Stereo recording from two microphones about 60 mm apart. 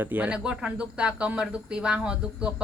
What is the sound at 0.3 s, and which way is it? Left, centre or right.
Speech, centre.